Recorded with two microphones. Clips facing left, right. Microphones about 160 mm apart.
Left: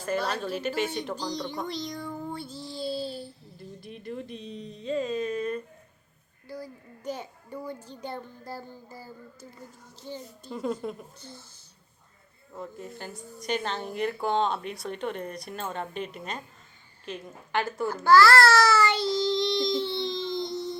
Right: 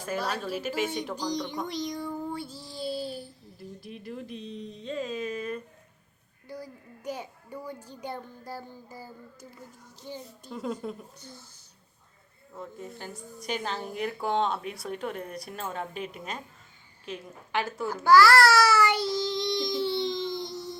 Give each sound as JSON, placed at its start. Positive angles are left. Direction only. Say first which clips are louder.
{"t": 0.0, "sound": "speech", "louder": "left 2 dB", "side_deg": -5}
{"t": 1.6, "sound": "child singing", "louder": "right 1 dB", "side_deg": -15}
{"t": 3.8, "sound": "a woman's voice", "louder": "left 3 dB", "side_deg": 0}
{"t": 6.5, "sound": "speech", "louder": "left 1 dB", "side_deg": -15}
{"t": 10.5, "sound": "a woman's voice", "louder": "left 2 dB", "side_deg": 0}
{"t": 11.2, "sound": "speech", "louder": "left 1 dB", "side_deg": -15}
{"t": 12.5, "sound": "a woman's voice", "louder": "left 1 dB", "side_deg": 0}
{"t": 17.1, "sound": "babbling", "louder": "left 1 dB", "side_deg": 0}